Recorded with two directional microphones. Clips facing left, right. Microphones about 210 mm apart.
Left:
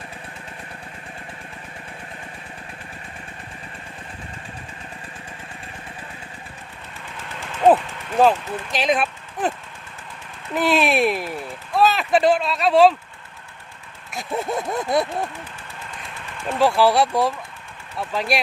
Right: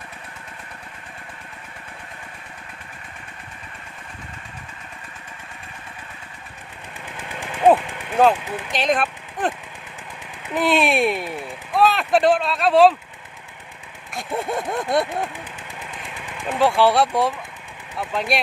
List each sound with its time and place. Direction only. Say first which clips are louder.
7.2 s a sound: even; 15° right (ahead or behind)
8.4 s speech: even; 15° right (ahead or behind)
8.7 s speech: even; centre (ahead or behind)
10.5 s speech: even; centre (ahead or behind)
14.1 s a sound: even; centre (ahead or behind)
15.8 s engine: right 1 dB; 15° right (ahead or behind)
16.5 s speech: even; centre (ahead or behind)